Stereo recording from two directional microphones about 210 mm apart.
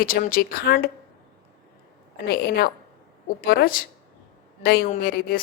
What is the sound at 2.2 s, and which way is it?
A woman's voice, 50° left (ahead or behind).